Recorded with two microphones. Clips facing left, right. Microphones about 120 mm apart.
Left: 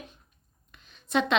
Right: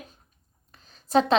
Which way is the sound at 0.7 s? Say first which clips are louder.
Right 6 dB; 35° right (ahead or behind).